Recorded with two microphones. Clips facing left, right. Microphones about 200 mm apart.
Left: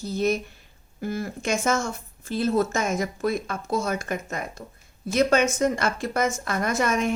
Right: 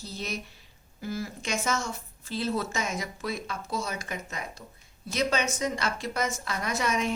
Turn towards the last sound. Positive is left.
turn(degrees=50)  # may be behind; listen again after turning